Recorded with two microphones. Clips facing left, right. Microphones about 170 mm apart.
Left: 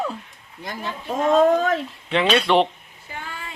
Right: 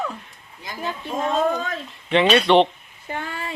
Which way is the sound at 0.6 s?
55° left (ahead or behind).